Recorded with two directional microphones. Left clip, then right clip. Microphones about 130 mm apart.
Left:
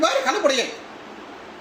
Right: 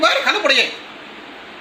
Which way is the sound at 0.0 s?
20° left (ahead or behind).